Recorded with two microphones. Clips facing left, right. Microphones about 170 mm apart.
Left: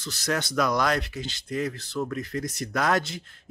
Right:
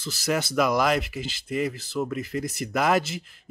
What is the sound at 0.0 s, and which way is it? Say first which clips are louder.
Speech: right 2 dB; 5° right (ahead or behind).